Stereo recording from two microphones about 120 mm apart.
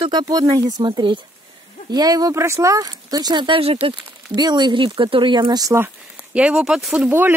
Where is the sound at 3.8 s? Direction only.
35° right (ahead or behind).